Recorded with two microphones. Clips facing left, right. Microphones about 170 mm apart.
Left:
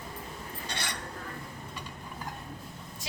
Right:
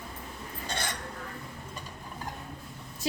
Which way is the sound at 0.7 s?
45° right (ahead or behind).